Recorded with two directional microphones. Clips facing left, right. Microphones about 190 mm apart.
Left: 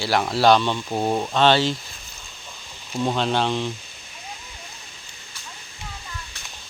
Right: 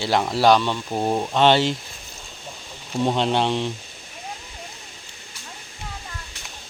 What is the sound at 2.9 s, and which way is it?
Speech, 20° right (ahead or behind).